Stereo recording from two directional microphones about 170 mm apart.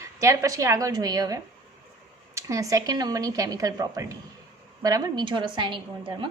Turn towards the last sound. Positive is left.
turn(degrees=-30)  # may be behind; listen again after turning